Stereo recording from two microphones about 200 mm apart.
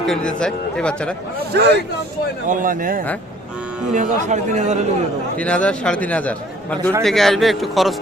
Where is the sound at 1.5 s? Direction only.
55° right (ahead or behind).